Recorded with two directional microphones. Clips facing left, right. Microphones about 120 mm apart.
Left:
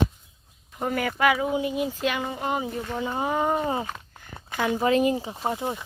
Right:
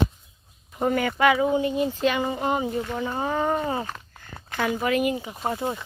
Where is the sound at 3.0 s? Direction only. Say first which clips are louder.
Left 2 dB; 15° left (ahead or behind).